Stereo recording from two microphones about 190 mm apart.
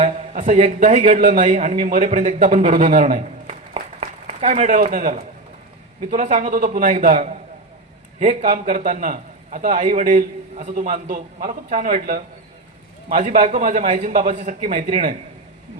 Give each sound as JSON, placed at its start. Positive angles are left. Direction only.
{"t": 0.0, "sound": "a man's voice", "side_deg": -40}